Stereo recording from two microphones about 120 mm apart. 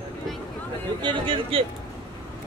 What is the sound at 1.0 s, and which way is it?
Speech, 45° right (ahead or behind).